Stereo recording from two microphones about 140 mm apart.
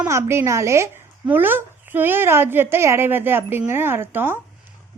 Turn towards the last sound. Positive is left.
turn(degrees=-15)  # may be behind; listen again after turning